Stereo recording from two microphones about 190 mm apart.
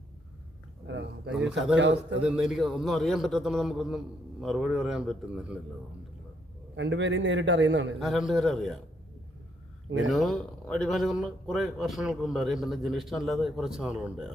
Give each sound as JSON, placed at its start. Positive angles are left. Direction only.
{"t": 0.9, "sound": "speech", "side_deg": -65}
{"t": 1.5, "sound": "a man's voice", "side_deg": -5}
{"t": 6.7, "sound": "a man's voice", "side_deg": -75}
{"t": 7.9, "sound": "a man's voice", "side_deg": 0}
{"t": 10.0, "sound": "a man's voice", "side_deg": 0}